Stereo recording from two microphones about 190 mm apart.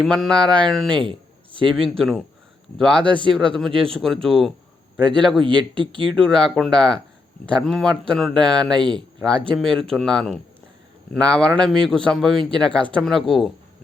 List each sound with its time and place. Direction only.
0.0 s a man's voice: centre (ahead or behind)
5.4 s speech: 25° right (ahead or behind)
6.1 s a man's voice: 5° left (ahead or behind)
8.9 s speech: 25° right (ahead or behind)
9.2 s a man's voice: 5° left (ahead or behind)